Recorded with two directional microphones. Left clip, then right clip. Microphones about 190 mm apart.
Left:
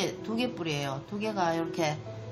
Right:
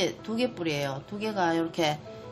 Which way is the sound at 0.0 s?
25° right (ahead or behind).